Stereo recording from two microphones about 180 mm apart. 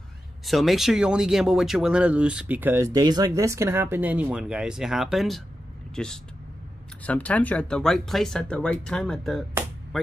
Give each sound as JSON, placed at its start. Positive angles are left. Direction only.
{"t": 0.5, "sound": "speech", "side_deg": 0}
{"t": 7.1, "sound": "speech", "side_deg": 10}